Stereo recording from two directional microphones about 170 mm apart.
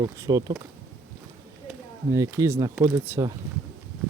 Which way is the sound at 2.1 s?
20° right (ahead or behind).